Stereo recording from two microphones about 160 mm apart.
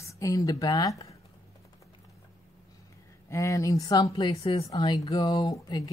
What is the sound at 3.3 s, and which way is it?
Speech, 20° left (ahead or behind).